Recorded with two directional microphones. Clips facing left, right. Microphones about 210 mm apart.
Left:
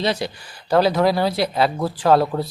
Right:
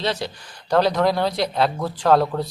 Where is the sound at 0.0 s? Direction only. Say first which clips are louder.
Left 3 dB; 10° left (ahead or behind).